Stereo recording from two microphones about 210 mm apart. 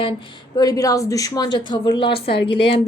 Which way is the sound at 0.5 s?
15° left (ahead or behind).